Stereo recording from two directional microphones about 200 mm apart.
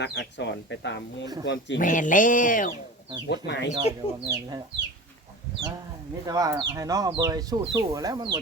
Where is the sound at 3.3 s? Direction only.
60° left (ahead or behind).